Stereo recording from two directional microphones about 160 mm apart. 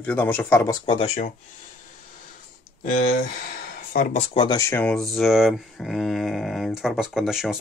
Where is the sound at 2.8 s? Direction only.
55° left (ahead or behind).